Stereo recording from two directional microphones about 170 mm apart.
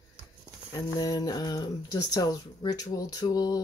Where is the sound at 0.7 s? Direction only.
20° left (ahead or behind).